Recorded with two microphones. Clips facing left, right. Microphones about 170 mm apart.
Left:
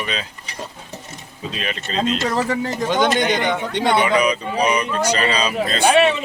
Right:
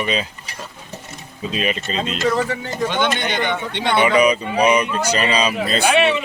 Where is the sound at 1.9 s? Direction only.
35° left (ahead or behind).